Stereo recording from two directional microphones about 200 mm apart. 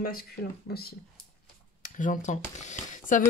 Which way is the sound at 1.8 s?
40° left (ahead or behind).